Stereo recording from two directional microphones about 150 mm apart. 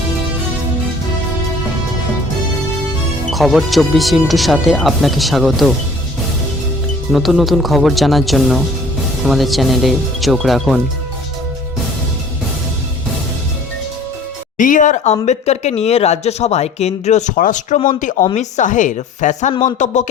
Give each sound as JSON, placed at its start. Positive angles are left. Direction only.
{"t": 3.2, "sound": "speech", "side_deg": 0}
{"t": 7.1, "sound": "speech", "side_deg": 0}
{"t": 14.6, "sound": "speech", "side_deg": 60}